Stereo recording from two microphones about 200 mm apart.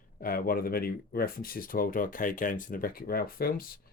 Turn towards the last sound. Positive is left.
turn(degrees=50)  # may be behind; listen again after turning